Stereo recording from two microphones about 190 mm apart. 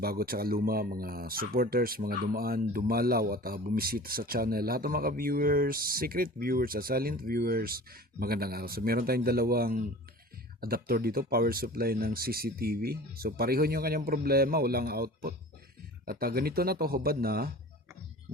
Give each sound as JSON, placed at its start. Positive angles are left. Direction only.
{"t": 0.0, "sound": "speech", "side_deg": -50}